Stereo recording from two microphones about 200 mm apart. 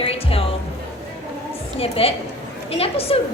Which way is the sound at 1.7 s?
30° left (ahead or behind).